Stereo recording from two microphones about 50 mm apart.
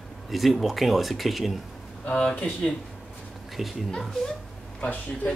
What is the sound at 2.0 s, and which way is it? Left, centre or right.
Speech, centre.